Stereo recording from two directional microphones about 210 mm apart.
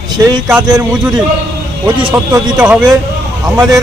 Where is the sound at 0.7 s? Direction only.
20° right (ahead or behind).